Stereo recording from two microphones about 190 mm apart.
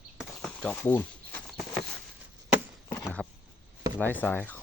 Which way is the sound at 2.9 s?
10° left (ahead or behind).